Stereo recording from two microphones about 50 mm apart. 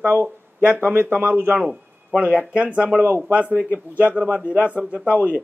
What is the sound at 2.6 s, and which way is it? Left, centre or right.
A man's voice, right.